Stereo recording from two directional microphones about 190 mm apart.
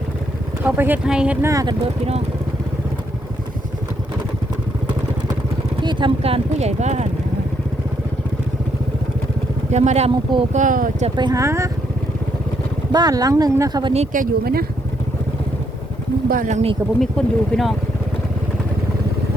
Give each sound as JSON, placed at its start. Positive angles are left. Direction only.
{"t": 0.6, "sound": "speech", "side_deg": -10}
{"t": 5.8, "sound": "speech", "side_deg": -25}
{"t": 9.7, "sound": "speech", "side_deg": -35}
{"t": 11.2, "sound": "speech", "side_deg": -20}
{"t": 12.9, "sound": "speech", "side_deg": -20}
{"t": 13.9, "sound": "speech", "side_deg": -40}
{"t": 16.3, "sound": "speech", "side_deg": -45}
{"t": 17.0, "sound": "speech", "side_deg": 0}